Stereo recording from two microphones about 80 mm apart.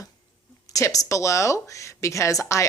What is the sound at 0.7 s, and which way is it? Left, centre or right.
A woman's voice, left.